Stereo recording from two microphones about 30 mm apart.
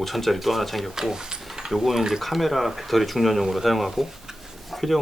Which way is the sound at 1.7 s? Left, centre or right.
Centre.